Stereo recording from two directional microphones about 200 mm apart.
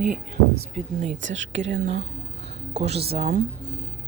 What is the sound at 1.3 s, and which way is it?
Speech, 70° right (ahead or behind).